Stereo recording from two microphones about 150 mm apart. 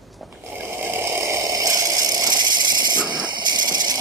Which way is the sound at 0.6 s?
15° right (ahead or behind).